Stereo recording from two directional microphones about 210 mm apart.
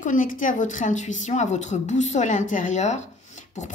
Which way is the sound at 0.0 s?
40° left (ahead or behind).